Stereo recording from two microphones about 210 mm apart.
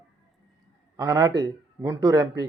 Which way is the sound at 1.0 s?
15° right (ahead or behind).